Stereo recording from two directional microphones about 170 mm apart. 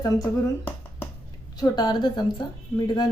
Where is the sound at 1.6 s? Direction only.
25° left (ahead or behind).